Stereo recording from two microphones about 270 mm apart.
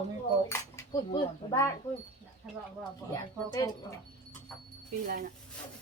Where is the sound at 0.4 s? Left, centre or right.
Centre.